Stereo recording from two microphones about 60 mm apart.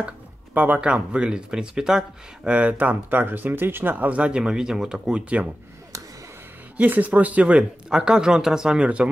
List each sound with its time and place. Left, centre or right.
0.6 s speech: right
2.4 s speech: right
4.4 s speech: centre
6.8 s speech: right